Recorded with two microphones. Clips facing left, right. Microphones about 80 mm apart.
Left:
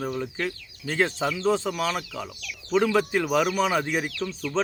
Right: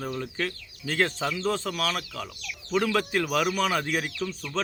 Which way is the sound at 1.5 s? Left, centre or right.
Centre.